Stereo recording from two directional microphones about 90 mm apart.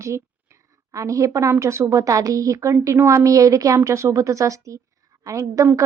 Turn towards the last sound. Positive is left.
turn(degrees=-35)  # may be behind; listen again after turning